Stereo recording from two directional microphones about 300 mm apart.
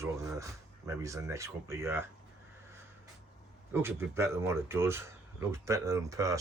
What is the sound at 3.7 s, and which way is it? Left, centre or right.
Speech, centre.